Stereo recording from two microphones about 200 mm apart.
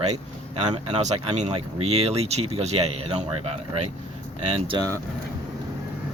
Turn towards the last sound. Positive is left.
turn(degrees=-30)  # may be behind; listen again after turning